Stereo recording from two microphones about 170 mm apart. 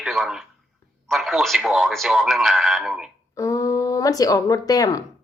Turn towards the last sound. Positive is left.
turn(degrees=20)  # may be behind; listen again after turning